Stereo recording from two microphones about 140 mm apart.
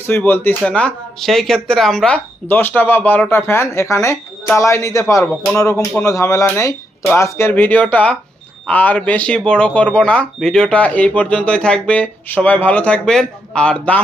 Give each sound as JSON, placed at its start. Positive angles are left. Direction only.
{"t": 0.0, "sound": "speech", "side_deg": 15}